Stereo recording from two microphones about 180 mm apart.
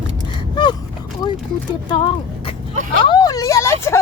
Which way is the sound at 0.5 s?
25° left (ahead or behind).